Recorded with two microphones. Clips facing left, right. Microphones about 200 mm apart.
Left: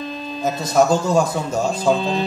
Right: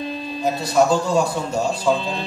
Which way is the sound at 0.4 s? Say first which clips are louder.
Left 1 dB; 45° left (ahead or behind).